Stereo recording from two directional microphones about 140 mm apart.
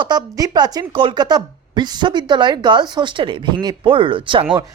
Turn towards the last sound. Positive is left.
turn(degrees=-35)  # may be behind; listen again after turning